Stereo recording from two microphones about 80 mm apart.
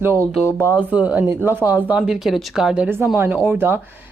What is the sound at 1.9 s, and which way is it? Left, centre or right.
Speech, centre.